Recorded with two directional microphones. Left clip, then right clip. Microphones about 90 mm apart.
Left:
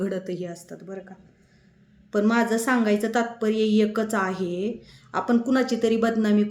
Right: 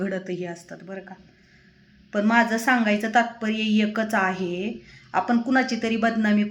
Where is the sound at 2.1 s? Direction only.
40° left (ahead or behind).